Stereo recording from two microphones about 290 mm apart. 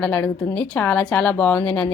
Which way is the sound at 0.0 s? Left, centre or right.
Centre.